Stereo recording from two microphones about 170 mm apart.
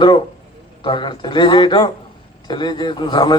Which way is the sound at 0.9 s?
30° left (ahead or behind).